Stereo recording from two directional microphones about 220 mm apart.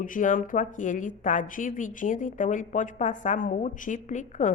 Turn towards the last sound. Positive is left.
turn(degrees=35)  # may be behind; listen again after turning